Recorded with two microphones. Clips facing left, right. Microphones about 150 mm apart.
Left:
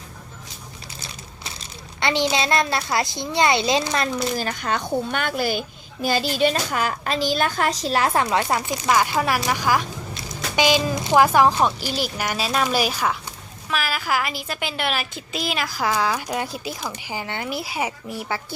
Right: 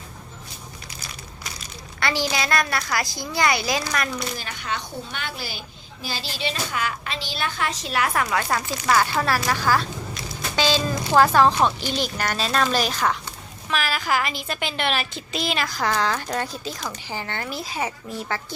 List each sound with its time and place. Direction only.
2.0 s a woman's voice: 20° left (ahead or behind)
4.4 s a woman's voice: 45° left (ahead or behind); by 18.4 s 10° left (ahead or behind)